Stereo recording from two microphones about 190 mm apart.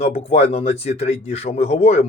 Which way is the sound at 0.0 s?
35° left (ahead or behind).